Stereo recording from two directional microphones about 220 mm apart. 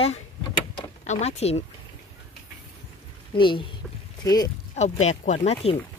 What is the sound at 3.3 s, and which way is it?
Speech, 20° left (ahead or behind).